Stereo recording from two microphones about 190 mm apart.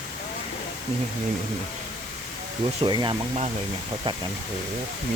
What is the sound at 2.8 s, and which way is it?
Speech, 25° right (ahead or behind).